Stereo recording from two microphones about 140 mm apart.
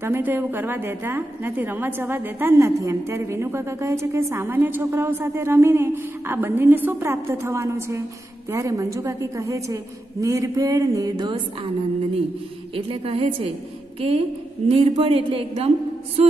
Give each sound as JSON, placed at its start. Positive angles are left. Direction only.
{"t": 0.0, "sound": "a woman's voice", "side_deg": -15}
{"t": 12.7, "sound": "a woman's voice", "side_deg": -40}